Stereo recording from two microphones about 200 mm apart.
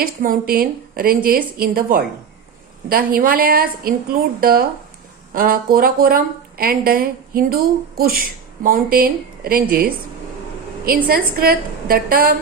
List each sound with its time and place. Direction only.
0.0 s a woman's voice: 45° right (ahead or behind)